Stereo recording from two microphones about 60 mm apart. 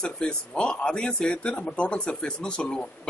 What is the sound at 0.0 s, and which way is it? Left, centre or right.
A man's voice, centre.